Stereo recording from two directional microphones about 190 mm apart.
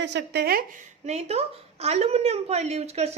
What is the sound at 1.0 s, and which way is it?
A woman's voice, 35° right (ahead or behind).